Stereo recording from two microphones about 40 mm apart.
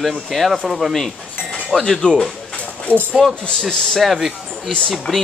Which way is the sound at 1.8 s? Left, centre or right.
Centre.